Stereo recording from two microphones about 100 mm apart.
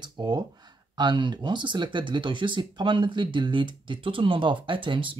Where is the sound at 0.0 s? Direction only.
45° right (ahead or behind).